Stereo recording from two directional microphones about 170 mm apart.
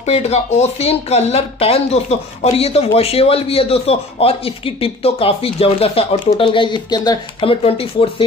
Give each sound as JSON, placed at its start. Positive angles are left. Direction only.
{"t": 0.0, "sound": "speech", "side_deg": 40}